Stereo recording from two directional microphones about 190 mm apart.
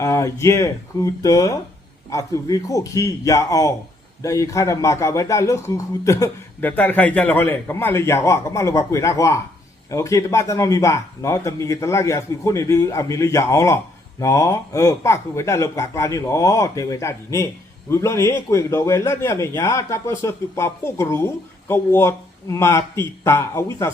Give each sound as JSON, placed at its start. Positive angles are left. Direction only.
{"t": 0.0, "sound": "a man's voice", "side_deg": 15}